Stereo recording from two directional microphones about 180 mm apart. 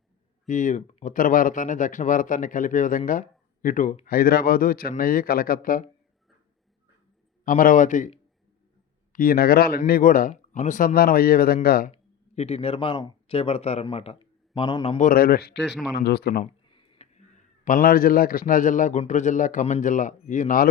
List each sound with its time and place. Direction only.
0.4 s speech: 45° left (ahead or behind)
7.4 s speech: 50° left (ahead or behind)
9.1 s speech: 55° left (ahead or behind)
12.3 s speech: 35° left (ahead or behind)
14.9 s speech: 50° left (ahead or behind)
16.6 s speech: 25° left (ahead or behind); by 20.7 s 45° left (ahead or behind)